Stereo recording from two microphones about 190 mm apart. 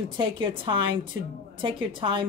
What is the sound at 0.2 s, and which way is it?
A woman's voice, 25° right (ahead or behind).